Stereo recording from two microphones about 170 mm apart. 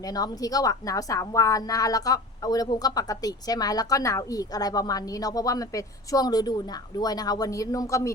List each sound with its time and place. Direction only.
0.0 s speech: 20° left (ahead or behind)